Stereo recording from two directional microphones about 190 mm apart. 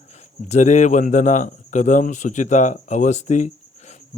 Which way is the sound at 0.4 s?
35° left (ahead or behind).